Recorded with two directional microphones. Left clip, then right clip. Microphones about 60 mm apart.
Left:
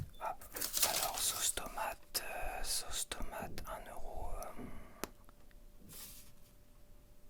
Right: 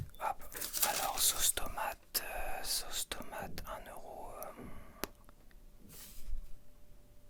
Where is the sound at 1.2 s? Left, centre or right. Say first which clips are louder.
Right 4 dB; right; by 5.1 s centre.